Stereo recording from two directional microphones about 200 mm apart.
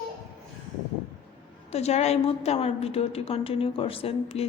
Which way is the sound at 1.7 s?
30° left (ahead or behind).